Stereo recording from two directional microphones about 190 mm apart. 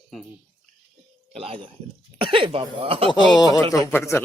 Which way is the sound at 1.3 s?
30° right (ahead or behind).